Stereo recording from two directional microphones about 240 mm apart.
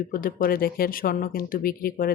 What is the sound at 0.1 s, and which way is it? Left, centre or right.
Speech, left.